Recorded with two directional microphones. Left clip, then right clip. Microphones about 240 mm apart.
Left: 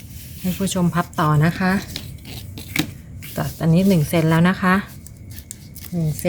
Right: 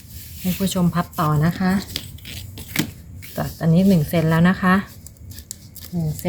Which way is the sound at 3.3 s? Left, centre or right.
Centre.